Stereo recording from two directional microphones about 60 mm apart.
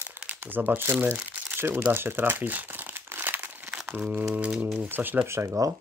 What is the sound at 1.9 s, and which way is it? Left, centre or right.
Crumpling, right.